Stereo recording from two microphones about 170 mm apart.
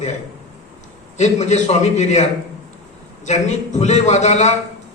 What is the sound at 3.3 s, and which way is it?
A man's voice, 45° left (ahead or behind).